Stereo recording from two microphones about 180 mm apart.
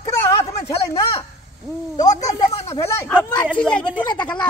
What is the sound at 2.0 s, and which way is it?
A man's voice, 20° left (ahead or behind).